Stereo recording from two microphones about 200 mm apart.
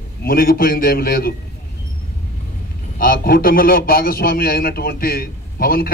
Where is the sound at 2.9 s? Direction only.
45° left (ahead or behind).